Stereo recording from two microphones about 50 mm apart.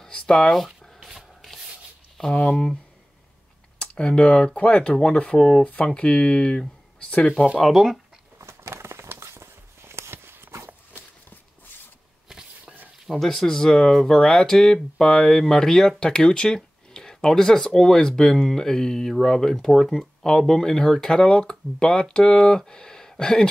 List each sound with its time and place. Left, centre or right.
0.1 s speech: centre
1.0 s rub: centre
2.2 s speech: centre
4.1 s speech: centre
7.7 s speech: centre
8.4 s a sound: right
12.3 s a sound: centre
13.0 s speech: centre
13.3 s speech: centre